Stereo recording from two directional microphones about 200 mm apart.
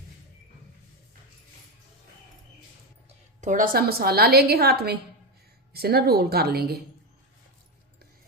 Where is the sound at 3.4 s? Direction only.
40° right (ahead or behind).